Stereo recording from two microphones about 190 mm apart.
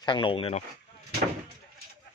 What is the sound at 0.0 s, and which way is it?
Speech, 25° left (ahead or behind).